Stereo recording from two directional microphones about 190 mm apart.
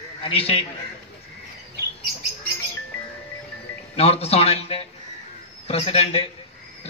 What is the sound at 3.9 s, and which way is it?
A man's voice, 30° left (ahead or behind).